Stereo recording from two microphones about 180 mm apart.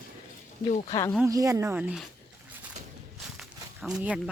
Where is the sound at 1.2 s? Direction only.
20° right (ahead or behind).